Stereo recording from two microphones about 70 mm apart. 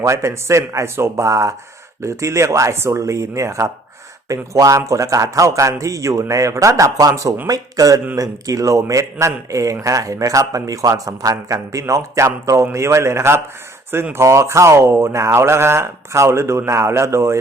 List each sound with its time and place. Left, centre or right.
0.0 s a man's voice: right